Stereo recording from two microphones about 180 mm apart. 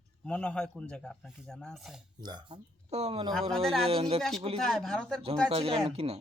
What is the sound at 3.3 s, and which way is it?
Speech, centre (ahead or behind).